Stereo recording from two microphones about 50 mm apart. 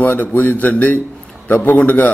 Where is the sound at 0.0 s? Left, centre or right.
Left.